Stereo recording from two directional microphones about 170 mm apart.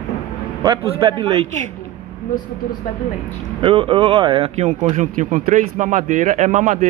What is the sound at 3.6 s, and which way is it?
A man's voice, 35° right (ahead or behind).